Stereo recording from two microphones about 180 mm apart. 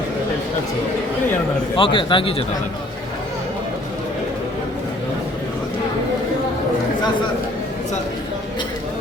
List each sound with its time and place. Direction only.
1.7 s a man's voice: 30° left (ahead or behind)